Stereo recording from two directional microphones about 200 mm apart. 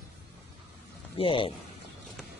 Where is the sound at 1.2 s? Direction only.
25° left (ahead or behind).